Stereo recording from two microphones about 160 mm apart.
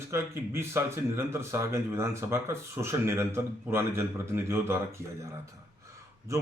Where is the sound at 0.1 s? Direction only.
15° right (ahead or behind).